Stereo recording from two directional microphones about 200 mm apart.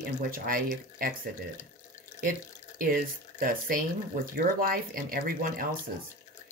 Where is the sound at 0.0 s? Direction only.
45° right (ahead or behind).